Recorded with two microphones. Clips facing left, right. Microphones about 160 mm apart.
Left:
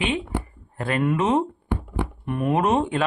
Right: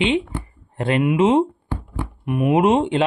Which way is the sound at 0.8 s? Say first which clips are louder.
Right 5 dB; 25° right (ahead or behind).